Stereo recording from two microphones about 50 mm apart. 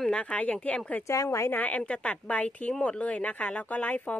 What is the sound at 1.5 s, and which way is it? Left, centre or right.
A woman's voice, left.